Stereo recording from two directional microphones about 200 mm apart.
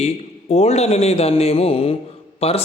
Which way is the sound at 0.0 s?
30° left (ahead or behind).